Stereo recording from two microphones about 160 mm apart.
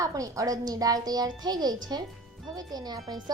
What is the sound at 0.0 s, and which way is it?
A woman's voice, 20° right (ahead or behind).